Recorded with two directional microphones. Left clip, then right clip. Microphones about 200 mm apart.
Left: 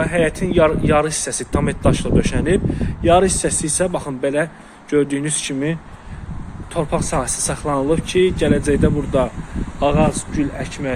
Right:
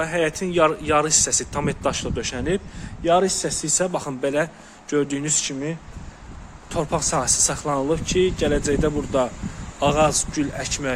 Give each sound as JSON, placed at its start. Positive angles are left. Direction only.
{"t": 0.0, "sound": "speech", "side_deg": -10}
{"t": 5.5, "sound": "speech", "side_deg": 10}
{"t": 6.7, "sound": "speech", "side_deg": -10}